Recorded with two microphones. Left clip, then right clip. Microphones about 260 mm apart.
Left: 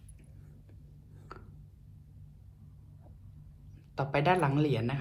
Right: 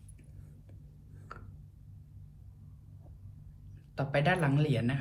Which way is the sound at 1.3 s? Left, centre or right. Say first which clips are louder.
Right 1 dB; centre.